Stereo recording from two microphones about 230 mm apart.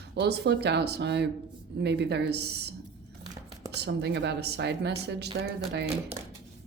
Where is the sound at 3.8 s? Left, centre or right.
Right.